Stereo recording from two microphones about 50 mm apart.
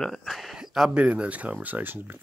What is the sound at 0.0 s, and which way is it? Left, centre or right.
Speech, centre.